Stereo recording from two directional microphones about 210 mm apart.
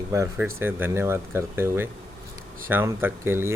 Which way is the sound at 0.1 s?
15° right (ahead or behind).